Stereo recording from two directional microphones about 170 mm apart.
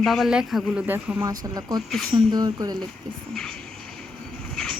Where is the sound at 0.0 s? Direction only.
Centre (ahead or behind); by 2.7 s 25° right (ahead or behind).